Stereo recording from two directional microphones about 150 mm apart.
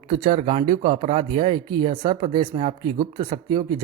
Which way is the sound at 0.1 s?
35° right (ahead or behind).